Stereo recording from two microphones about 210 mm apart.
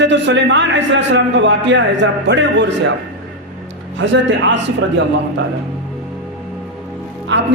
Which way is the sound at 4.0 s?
60° right (ahead or behind).